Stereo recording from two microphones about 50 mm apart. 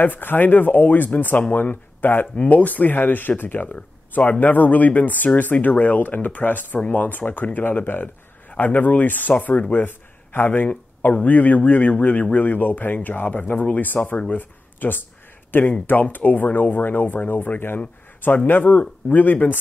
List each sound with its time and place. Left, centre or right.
0.0 s speech: left